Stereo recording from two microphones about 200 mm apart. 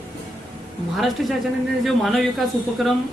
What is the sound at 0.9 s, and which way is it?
A woman's voice, centre (ahead or behind).